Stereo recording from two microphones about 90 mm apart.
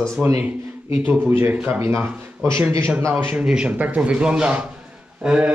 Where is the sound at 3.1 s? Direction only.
15° right (ahead or behind).